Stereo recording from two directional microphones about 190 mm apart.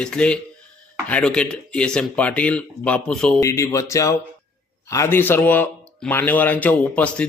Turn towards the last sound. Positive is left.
turn(degrees=5)  # may be behind; listen again after turning